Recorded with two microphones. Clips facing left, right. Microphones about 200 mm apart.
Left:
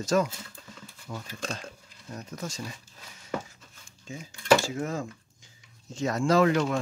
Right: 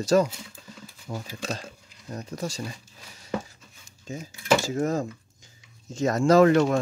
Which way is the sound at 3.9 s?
40° right (ahead or behind).